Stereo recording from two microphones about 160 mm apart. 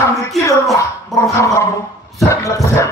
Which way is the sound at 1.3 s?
20° left (ahead or behind).